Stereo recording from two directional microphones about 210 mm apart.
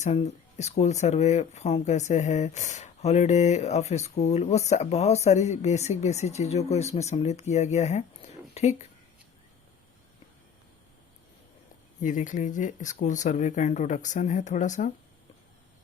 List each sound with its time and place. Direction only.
0.0 s speech: 30° left (ahead or behind)
11.9 s speech: 35° left (ahead or behind)